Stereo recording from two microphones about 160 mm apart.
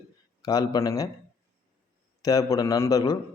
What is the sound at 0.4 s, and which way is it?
Speech, 25° left (ahead or behind).